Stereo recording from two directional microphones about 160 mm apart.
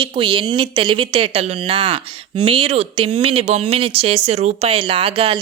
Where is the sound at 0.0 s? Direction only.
30° right (ahead or behind).